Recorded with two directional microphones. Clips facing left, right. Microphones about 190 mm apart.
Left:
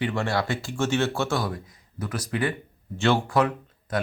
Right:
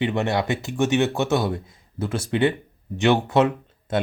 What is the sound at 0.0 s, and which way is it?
Speech, 20° right (ahead or behind).